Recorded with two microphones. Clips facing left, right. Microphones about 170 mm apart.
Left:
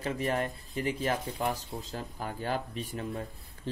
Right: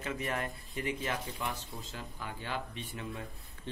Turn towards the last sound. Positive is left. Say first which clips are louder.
# left 6 dB
turn(degrees=40)  # may be behind; listen again after turning